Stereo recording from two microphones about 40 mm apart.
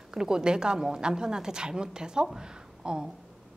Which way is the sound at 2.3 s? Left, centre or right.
Centre.